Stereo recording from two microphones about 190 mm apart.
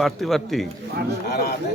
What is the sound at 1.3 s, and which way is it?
Speech, 55° left (ahead or behind).